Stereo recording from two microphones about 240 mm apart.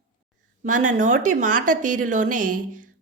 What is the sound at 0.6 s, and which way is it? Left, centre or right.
A woman's voice, right.